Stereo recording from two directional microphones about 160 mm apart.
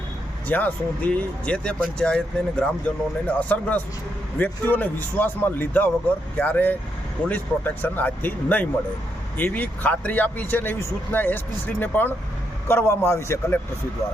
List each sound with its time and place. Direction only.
0.4 s speech: 10° left (ahead or behind)